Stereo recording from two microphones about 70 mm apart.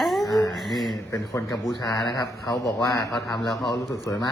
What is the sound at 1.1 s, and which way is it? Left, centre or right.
Speech, left.